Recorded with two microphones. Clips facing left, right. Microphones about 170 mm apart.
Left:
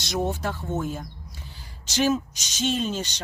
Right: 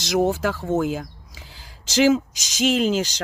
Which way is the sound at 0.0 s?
90° right.